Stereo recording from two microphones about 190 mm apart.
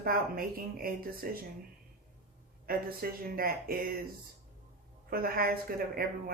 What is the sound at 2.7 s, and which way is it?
Speech, 50° right (ahead or behind).